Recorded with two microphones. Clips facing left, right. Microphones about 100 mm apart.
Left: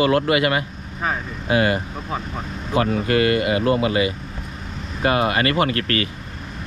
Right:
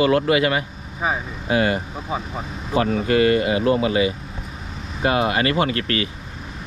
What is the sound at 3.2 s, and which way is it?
Speech, 30° right (ahead or behind).